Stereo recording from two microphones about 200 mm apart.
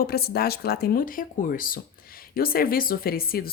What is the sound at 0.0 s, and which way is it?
A woman's voice, 50° left (ahead or behind).